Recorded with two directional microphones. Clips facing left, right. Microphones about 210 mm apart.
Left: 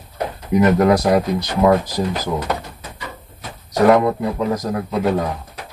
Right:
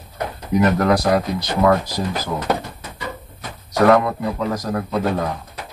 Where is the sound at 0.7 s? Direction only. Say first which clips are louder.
Left 3 dB; 20° left (ahead or behind).